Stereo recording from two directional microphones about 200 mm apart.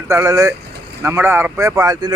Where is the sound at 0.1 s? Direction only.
15° right (ahead or behind).